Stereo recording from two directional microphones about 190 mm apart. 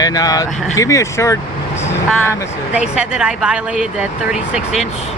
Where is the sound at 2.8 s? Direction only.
5° right (ahead or behind).